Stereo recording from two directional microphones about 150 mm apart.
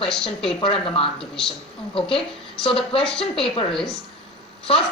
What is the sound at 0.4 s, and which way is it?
Speech, 35° left (ahead or behind).